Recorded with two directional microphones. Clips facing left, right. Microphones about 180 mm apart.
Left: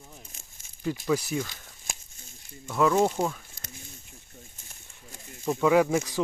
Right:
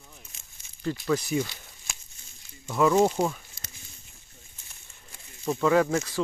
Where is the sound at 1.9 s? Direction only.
50° left (ahead or behind).